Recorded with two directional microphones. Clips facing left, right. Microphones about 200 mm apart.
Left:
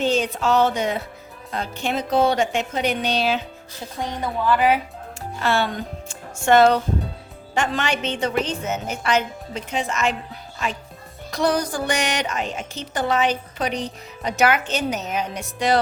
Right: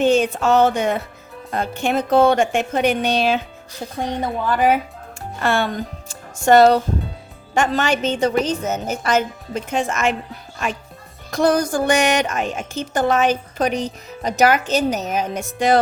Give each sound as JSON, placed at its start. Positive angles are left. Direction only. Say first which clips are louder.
{"t": 0.0, "sound": "a woman's voice", "louder": "right 5 dB", "side_deg": -55}
{"t": 4.4, "sound": "a woman's voice", "louder": "right 1 dB", "side_deg": -45}
{"t": 11.3, "sound": "a woman's voice", "louder": "right 4 dB", "side_deg": -50}